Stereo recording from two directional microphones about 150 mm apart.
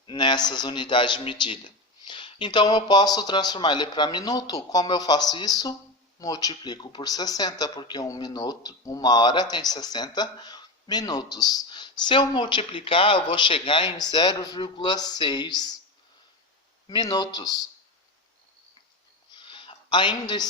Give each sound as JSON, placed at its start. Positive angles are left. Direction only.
{"t": 0.0, "sound": "speech", "side_deg": 30}
{"t": 16.8, "sound": "speech", "side_deg": 30}
{"t": 19.3, "sound": "a sound", "side_deg": 35}